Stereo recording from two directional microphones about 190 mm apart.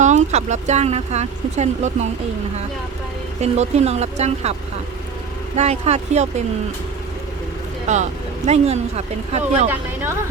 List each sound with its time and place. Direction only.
0.0 s speech: 40° right (ahead or behind)
3.4 s speech: 35° right (ahead or behind)
5.5 s speech: 35° right (ahead or behind)
7.9 s speech: 40° right (ahead or behind)